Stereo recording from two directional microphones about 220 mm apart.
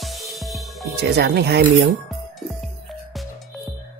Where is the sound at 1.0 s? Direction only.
45° right (ahead or behind).